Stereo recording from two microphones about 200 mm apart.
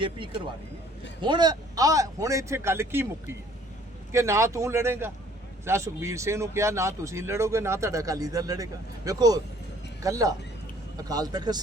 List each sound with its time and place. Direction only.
0.0 s speech: 25° right (ahead or behind)
4.1 s speech: 15° right (ahead or behind)